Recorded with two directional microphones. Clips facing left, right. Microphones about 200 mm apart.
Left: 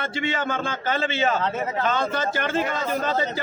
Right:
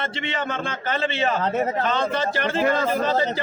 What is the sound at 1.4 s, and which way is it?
Speech, 35° right (ahead or behind).